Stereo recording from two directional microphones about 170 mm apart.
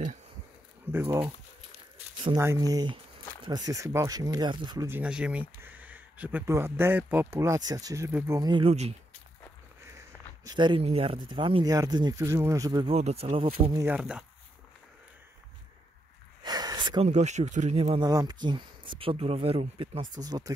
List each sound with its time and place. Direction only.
0.9 s speech: 15° right (ahead or behind)
2.3 s speech: 15° right (ahead or behind)
4.8 s speech: 10° right (ahead or behind)
8.4 s speech: 25° right (ahead or behind)
9.9 s speech: 20° right (ahead or behind)
12.8 s speech: 35° right (ahead or behind)
13.7 s speech: 10° right (ahead or behind)
16.4 s a sound: 25° right (ahead or behind)
17.0 s speech: 45° right (ahead or behind)
18.0 s speech: 25° right (ahead or behind)